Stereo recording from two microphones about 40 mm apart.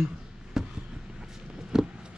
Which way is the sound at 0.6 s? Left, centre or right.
Centre.